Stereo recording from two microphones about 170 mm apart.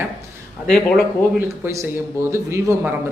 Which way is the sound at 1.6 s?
15° right (ahead or behind).